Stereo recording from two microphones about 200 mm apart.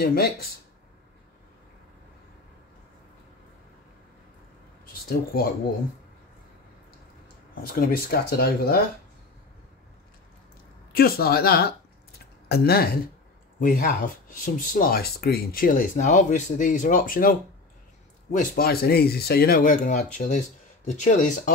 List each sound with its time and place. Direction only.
0.0 s speech: 50° left (ahead or behind)
5.1 s speech: 50° left (ahead or behind)
7.6 s speech: 45° left (ahead or behind)
11.0 s speech: 50° left (ahead or behind)